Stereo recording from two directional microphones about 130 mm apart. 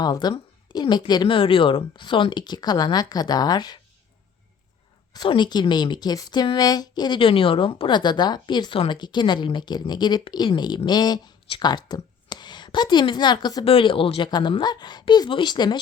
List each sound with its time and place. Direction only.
0.0 s a woman's voice: 30° left (ahead or behind)
5.1 s a woman's voice: 35° left (ahead or behind)
13.7 s a woman's voice: 45° left (ahead or behind)